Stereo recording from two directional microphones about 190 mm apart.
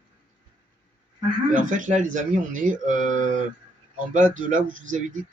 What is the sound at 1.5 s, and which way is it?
Speech, 45° right (ahead or behind).